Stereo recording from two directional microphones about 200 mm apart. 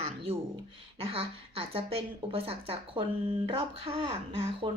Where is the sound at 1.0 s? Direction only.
30° right (ahead or behind).